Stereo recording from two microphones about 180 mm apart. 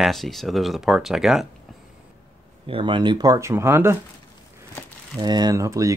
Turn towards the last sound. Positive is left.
turn(degrees=-15)  # may be behind; listen again after turning